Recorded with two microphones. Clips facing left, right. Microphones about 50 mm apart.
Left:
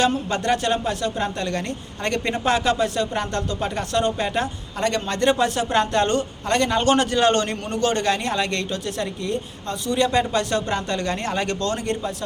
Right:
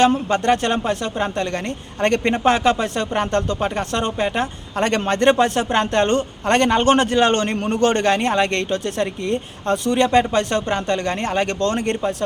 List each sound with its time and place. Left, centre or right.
0.0 s a woman's voice: right
4.8 s a woman's voice: right
6.5 s a man's voice: right
6.7 s a woman's voice: right